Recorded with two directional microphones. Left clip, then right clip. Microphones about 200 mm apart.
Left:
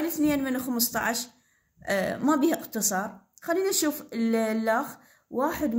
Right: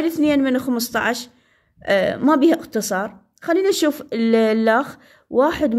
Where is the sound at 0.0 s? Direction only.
45° right (ahead or behind).